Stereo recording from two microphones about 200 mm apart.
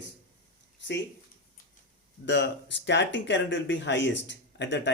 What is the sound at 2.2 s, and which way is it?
Speech, 60° left (ahead or behind).